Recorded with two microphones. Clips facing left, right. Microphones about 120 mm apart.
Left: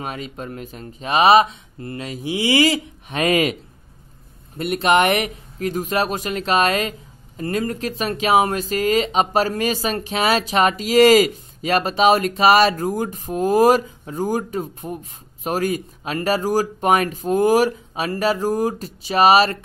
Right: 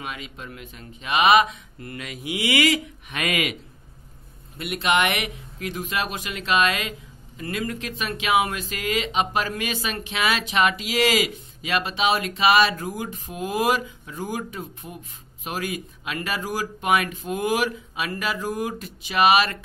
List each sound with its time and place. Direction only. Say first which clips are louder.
0.0 s speech: left 6 dB; 40° left (ahead or behind)
4.6 s speech: left 6 dB; 40° left (ahead or behind)